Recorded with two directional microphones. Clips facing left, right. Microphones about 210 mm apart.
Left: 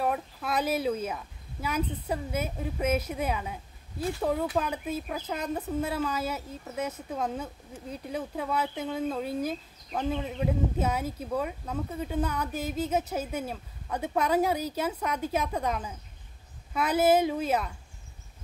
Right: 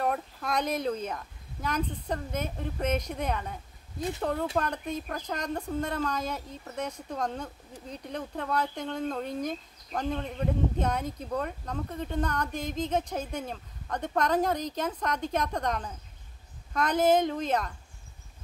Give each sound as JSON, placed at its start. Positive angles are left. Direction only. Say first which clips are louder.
{"t": 0.0, "sound": "speech", "louder": "even", "side_deg": 5}